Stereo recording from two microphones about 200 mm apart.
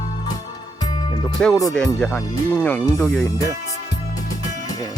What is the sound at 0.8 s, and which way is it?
Music, 20° left (ahead or behind).